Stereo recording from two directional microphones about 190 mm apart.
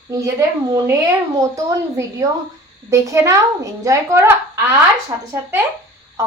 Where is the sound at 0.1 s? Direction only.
15° right (ahead or behind).